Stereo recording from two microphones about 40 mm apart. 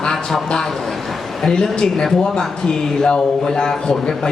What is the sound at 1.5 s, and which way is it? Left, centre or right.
A man's voice, centre.